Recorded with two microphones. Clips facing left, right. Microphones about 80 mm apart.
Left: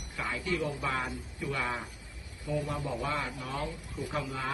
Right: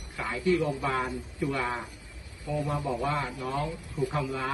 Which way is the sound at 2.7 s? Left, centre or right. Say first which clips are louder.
Right 5 dB; right.